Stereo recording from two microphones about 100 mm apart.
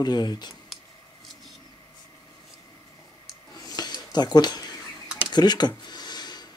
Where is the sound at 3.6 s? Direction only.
40° left (ahead or behind).